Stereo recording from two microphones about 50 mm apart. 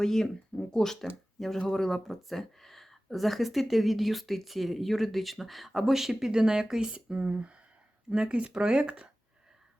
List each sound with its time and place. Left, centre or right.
0.0 s speech: centre